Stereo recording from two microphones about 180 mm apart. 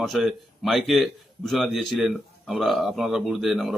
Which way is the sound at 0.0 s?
Centre (ahead or behind).